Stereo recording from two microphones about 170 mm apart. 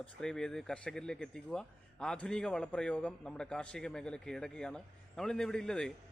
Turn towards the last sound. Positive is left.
turn(degrees=5)  # may be behind; listen again after turning